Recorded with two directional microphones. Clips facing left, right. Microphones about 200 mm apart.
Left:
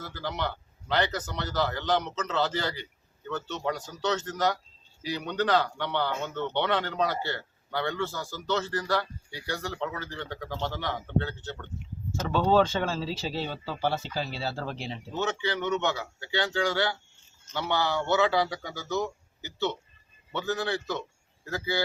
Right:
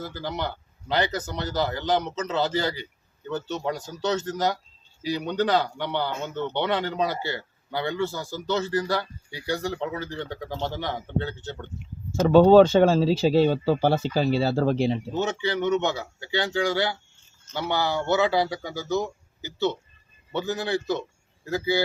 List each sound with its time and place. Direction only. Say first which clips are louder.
0.0 s speech: right 2 dB; 15° right (ahead or behind)
12.2 s speech: right 10 dB; 40° right (ahead or behind)
14.1 s speech: right 10 dB; 55° right (ahead or behind)
15.1 s speech: right 4 dB; 15° right (ahead or behind)